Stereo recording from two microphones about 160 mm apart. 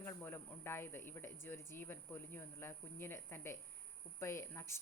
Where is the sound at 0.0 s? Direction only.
15° left (ahead or behind).